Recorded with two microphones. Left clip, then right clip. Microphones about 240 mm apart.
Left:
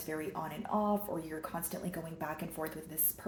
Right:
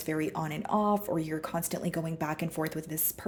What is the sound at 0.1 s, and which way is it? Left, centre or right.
Speech, right.